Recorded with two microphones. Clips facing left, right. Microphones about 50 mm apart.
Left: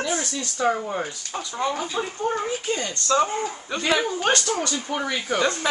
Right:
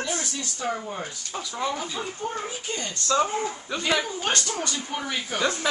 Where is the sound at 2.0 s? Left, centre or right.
Left.